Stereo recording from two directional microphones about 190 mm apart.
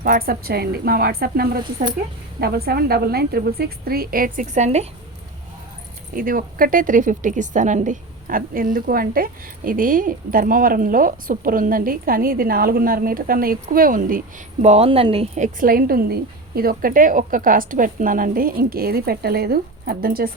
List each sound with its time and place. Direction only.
0.0 s a woman's voice: 50° right (ahead or behind)
6.1 s a woman's voice: 45° right (ahead or behind); by 15.4 s 30° right (ahead or behind)
15.6 s a woman's voice: 50° right (ahead or behind)